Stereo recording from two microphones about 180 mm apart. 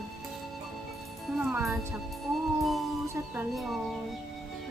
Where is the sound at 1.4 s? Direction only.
5° right (ahead or behind).